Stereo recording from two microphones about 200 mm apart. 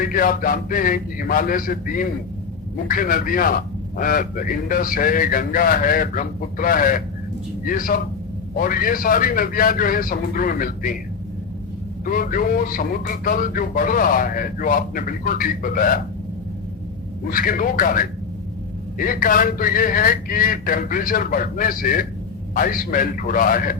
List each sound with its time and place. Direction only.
0.0 s a man's voice: 45° left (ahead or behind)
12.0 s a man's voice: 45° left (ahead or behind)
17.2 s a man's voice: 45° left (ahead or behind)